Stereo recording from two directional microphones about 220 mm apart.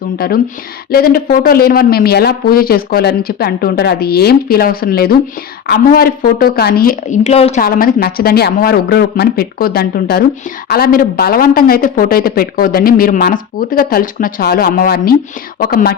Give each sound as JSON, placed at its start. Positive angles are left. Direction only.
{"t": 0.2, "sound": "speech", "side_deg": 40}
{"t": 7.6, "sound": "speech", "side_deg": 40}